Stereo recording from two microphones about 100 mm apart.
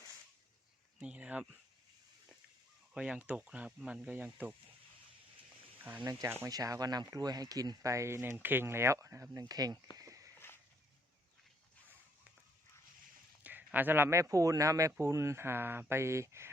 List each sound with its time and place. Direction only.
0.9 s speech: 10° right (ahead or behind)
2.9 s speech: 10° right (ahead or behind)
5.8 s speech: 15° right (ahead or behind)
6.5 s speech: 35° right (ahead or behind)
10.0 s a sound: 35° right (ahead or behind)
10.3 s a sound: 25° left (ahead or behind)
13.4 s speech: 15° right (ahead or behind)